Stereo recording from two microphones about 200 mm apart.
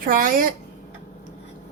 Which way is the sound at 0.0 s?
45° right (ahead or behind).